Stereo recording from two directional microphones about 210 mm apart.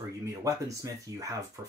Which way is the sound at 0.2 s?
15° right (ahead or behind).